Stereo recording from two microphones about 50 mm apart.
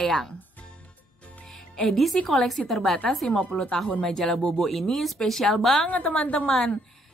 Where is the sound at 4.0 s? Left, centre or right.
Centre.